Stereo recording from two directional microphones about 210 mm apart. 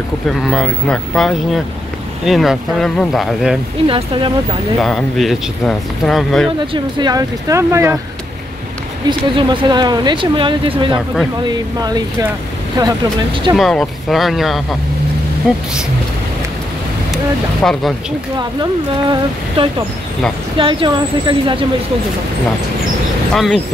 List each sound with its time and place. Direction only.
0.3 s speech: centre (ahead or behind)
3.8 s speech: 25° right (ahead or behind)
4.7 s speech: centre (ahead or behind)
6.7 s speech: 20° right (ahead or behind)
9.3 s speech: 25° right (ahead or behind)
13.6 s speech: centre (ahead or behind)
17.1 s speech: centre (ahead or behind)
18.6 s speech: 25° right (ahead or behind)
23.3 s speech: centre (ahead or behind)